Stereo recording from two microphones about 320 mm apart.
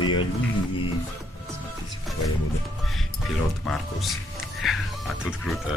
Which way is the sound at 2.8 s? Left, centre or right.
Centre.